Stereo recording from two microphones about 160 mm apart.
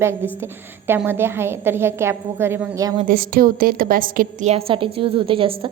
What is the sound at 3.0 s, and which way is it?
A woman's voice, 65° right (ahead or behind).